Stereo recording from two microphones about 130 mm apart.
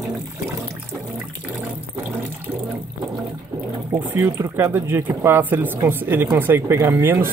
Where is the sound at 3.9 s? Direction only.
15° right (ahead or behind).